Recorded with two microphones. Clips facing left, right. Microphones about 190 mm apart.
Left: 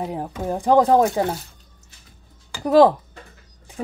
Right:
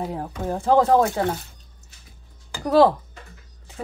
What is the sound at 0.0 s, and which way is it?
Speech, 15° left (ahead or behind).